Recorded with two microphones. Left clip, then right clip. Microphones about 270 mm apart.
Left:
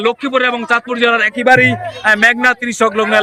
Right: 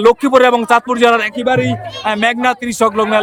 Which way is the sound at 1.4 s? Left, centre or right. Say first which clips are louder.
Left 5 dB; centre.